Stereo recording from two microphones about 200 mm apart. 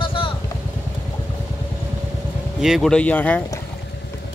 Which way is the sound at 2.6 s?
Centre (ahead or behind).